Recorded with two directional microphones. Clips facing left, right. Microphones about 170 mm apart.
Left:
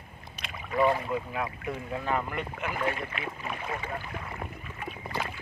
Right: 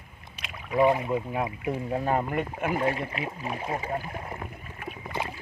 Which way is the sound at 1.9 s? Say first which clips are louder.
Right 4 dB; 40° right (ahead or behind).